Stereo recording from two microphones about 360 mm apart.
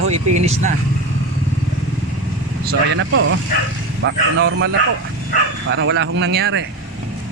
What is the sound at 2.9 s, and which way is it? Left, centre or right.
Speech, right.